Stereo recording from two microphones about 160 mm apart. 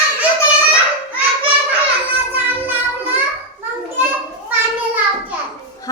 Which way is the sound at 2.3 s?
10° right (ahead or behind).